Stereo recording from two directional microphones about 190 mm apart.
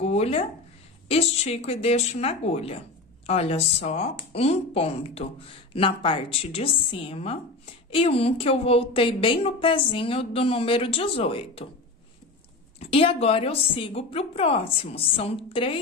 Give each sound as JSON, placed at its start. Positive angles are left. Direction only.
{"t": 0.0, "sound": "a sound", "side_deg": 35}
{"t": 1.0, "sound": "a woman's voice", "side_deg": 30}
{"t": 12.9, "sound": "a woman's voice", "side_deg": 30}